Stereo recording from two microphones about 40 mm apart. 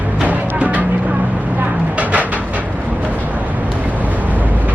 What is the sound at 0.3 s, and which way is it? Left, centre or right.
Music, right.